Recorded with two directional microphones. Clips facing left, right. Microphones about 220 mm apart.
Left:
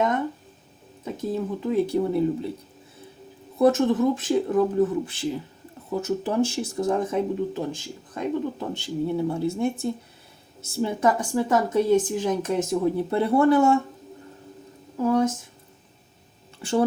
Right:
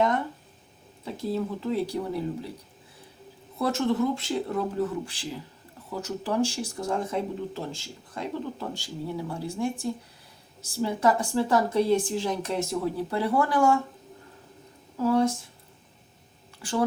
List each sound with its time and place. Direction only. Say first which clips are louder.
1.3 s speech: left 2 dB; 20° left (ahead or behind)
3.6 s speech: left 6 dB; 20° left (ahead or behind)
14.9 s speech: left 1 dB; 20° left (ahead or behind)
16.6 s speech: left 5 dB; 25° left (ahead or behind)